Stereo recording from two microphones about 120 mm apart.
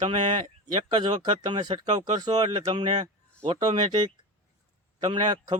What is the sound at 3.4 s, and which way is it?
Speech, 50° right (ahead or behind).